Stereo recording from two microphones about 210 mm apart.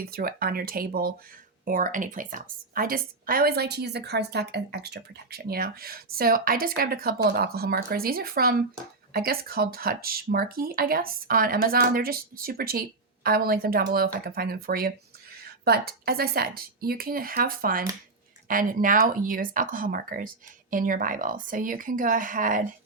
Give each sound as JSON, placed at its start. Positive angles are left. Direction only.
{"t": 0.0, "sound": "a woman's voice", "side_deg": -45}